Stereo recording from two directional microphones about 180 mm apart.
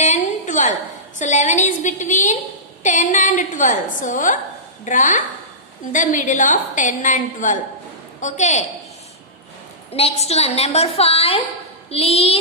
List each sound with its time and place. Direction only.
0.0 s a sound: 40° left (ahead or behind)
1.2 s a woman's voice: 40° left (ahead or behind)
9.9 s a woman's voice: 35° left (ahead or behind)